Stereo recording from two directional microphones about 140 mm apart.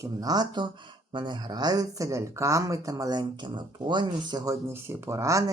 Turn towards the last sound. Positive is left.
turn(degrees=-20)  # may be behind; listen again after turning